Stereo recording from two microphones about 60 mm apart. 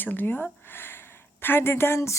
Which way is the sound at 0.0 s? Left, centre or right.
Left.